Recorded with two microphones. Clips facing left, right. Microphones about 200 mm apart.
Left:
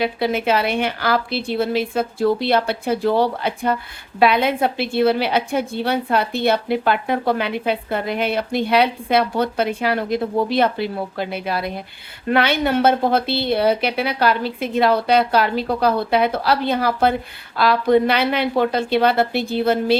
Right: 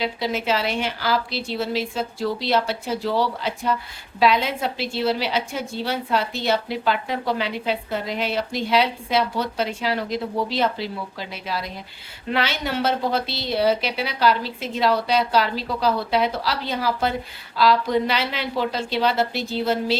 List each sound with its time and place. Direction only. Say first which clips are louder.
0.0 s a woman's voice: left 5 dB; 60° left (ahead or behind)